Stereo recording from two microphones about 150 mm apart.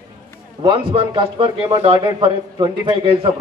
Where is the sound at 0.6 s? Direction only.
35° right (ahead or behind).